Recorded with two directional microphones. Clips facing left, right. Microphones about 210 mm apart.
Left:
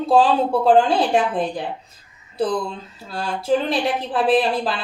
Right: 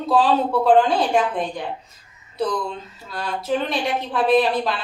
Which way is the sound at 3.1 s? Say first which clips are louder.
Left 3 dB; 30° left (ahead or behind).